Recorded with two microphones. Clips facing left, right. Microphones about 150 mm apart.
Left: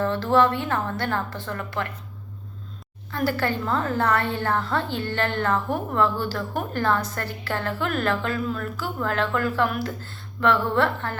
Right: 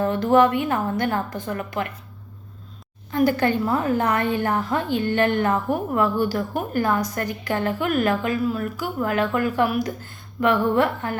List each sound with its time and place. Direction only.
0.0 s a woman's voice: 15° right (ahead or behind)
3.1 s a woman's voice: 15° right (ahead or behind)